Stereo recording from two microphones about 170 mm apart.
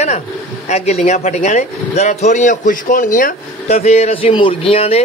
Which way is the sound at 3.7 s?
40° left (ahead or behind).